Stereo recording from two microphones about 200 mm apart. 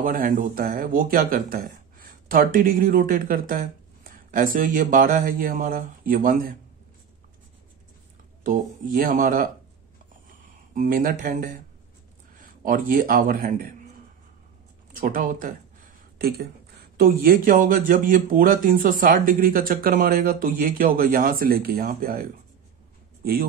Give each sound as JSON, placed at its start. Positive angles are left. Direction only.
{"t": 0.0, "sound": "speech", "side_deg": -40}
{"t": 8.5, "sound": "speech", "side_deg": -45}
{"t": 10.7, "sound": "speech", "side_deg": -45}
{"t": 14.9, "sound": "a sound", "side_deg": -45}
{"t": 16.9, "sound": "speech", "side_deg": -50}